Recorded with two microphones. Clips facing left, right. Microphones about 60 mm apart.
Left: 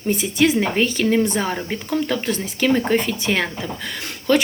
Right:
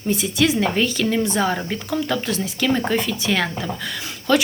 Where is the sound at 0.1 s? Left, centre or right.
Left.